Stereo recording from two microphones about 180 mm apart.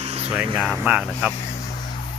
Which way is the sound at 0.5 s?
Centre (ahead or behind).